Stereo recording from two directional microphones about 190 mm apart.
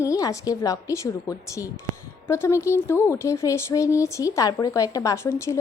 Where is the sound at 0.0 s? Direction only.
15° left (ahead or behind).